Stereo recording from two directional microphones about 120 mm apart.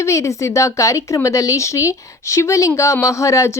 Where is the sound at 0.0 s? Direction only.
25° left (ahead or behind).